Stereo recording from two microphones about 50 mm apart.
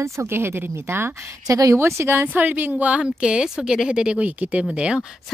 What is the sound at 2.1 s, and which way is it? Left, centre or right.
Speech, right.